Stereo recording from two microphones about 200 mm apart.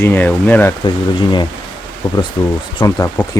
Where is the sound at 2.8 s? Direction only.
15° left (ahead or behind).